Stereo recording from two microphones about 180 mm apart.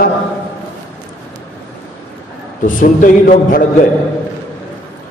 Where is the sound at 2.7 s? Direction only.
50° left (ahead or behind).